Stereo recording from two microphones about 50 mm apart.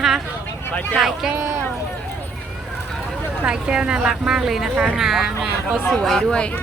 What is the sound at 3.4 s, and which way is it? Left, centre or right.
Speech, centre.